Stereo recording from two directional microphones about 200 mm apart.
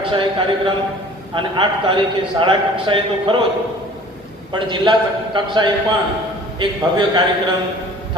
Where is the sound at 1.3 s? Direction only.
25° right (ahead or behind).